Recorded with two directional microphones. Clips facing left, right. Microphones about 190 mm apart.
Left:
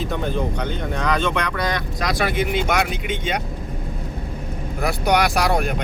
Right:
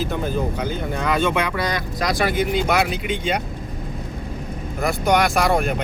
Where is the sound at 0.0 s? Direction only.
5° right (ahead or behind).